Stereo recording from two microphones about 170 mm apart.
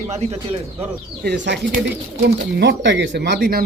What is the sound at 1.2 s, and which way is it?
Speech, 80° right.